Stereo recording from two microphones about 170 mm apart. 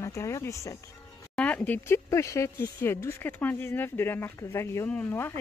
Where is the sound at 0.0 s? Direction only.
15° left (ahead or behind).